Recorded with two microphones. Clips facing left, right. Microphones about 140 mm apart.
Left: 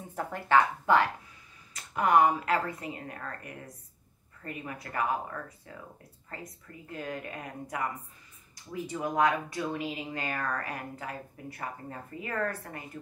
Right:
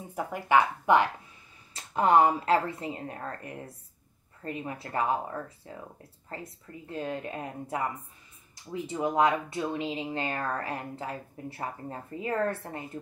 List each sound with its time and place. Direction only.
0.1 s speech: 15° right (ahead or behind); by 13.0 s 30° right (ahead or behind)